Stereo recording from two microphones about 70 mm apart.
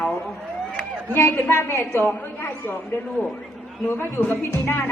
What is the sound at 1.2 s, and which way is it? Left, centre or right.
Speech, left.